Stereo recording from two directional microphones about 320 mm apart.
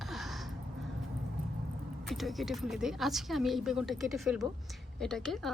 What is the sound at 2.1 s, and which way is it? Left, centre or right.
A woman's voice, centre.